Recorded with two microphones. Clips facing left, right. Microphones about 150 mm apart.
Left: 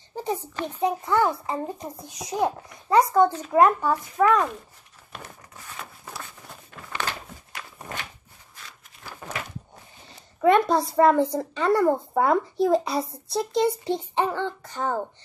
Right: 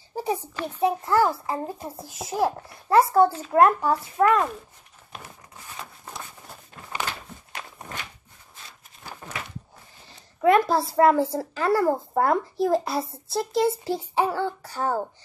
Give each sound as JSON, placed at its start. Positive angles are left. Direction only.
{"t": 0.1, "sound": "a sound", "side_deg": -10}
{"t": 0.7, "sound": "a woman's voice", "side_deg": -10}
{"t": 10.0, "sound": "a woman's voice", "side_deg": 0}